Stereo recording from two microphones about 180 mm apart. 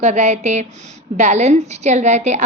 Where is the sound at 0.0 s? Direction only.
40° right (ahead or behind).